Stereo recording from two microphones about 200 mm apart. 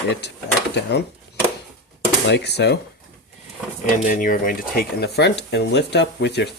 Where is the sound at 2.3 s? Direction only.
55° left (ahead or behind).